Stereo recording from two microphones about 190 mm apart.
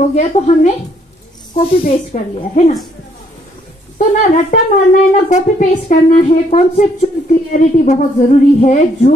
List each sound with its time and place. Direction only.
0.1 s speech: 40° left (ahead or behind)
4.0 s speech: 40° left (ahead or behind)